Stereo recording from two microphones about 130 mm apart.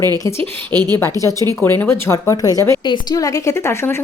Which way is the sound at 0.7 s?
30° right (ahead or behind).